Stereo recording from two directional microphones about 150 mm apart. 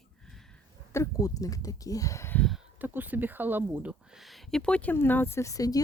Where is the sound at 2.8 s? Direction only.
10° right (ahead or behind).